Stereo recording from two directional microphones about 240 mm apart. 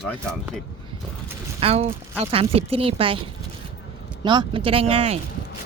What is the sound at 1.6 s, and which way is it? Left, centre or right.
Speech, right.